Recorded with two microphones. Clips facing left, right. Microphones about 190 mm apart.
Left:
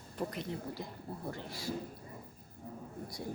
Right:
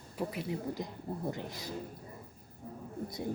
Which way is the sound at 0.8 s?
20° right (ahead or behind).